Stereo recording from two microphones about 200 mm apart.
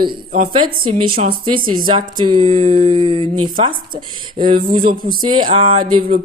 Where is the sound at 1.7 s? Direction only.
25° right (ahead or behind).